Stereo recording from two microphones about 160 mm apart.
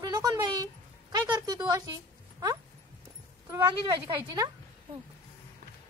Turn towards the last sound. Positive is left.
turn(degrees=-25)  # may be behind; listen again after turning